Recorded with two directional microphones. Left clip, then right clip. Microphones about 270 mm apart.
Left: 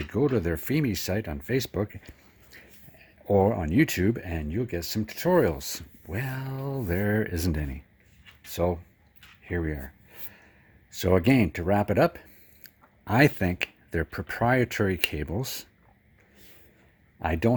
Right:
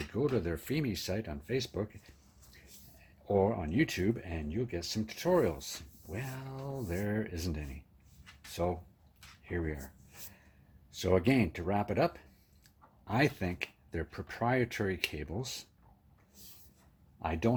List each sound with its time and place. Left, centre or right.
0.1 s speech: left
10.9 s speech: left
17.2 s speech: left